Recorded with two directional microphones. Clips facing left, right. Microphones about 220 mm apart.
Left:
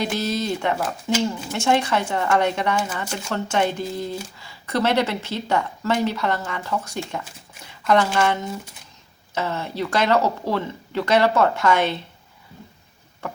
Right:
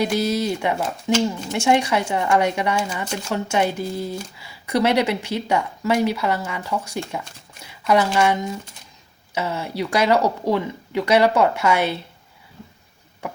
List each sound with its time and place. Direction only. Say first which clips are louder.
0.0 s speech: right 3 dB; 10° right (ahead or behind)